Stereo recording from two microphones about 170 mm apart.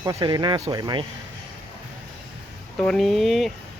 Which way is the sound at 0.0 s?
20° right (ahead or behind).